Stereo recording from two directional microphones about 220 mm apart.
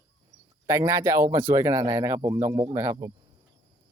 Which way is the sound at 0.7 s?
15° right (ahead or behind).